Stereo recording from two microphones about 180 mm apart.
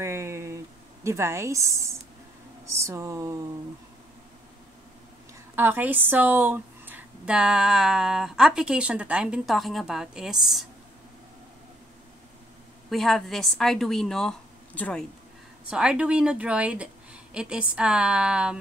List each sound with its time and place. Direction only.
0.0 s a sound: 15° right (ahead or behind)
1.0 s speech: 15° right (ahead or behind)
5.6 s a woman's voice: 10° right (ahead or behind)
12.9 s a woman's voice: centre (ahead or behind)
15.6 s a woman's voice: 5° right (ahead or behind)